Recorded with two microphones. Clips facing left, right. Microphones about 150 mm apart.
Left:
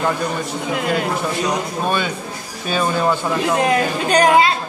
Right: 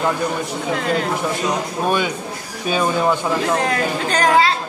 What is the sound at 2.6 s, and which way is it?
Speech, 15° right (ahead or behind).